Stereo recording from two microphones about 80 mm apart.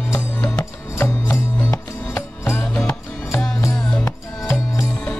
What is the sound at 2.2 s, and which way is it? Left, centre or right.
Music, left.